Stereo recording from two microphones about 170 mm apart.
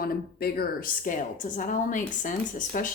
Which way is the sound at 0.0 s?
65° left (ahead or behind).